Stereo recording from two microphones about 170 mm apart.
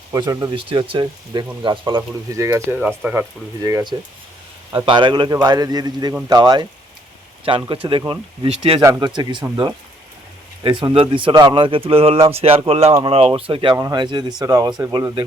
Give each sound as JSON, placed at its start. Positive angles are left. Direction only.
{"t": 0.1, "sound": "speech", "side_deg": -20}
{"t": 0.5, "sound": "speech", "side_deg": -30}
{"t": 2.7, "sound": "speech", "side_deg": -5}
{"t": 3.6, "sound": "speech", "side_deg": -20}
{"t": 10.6, "sound": "speech", "side_deg": -30}